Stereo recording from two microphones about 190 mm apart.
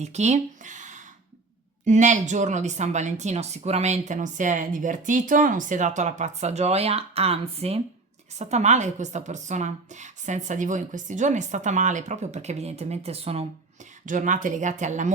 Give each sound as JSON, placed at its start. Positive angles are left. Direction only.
{"t": 0.0, "sound": "a woman's voice", "side_deg": -35}
{"t": 14.0, "sound": "a woman's voice", "side_deg": -45}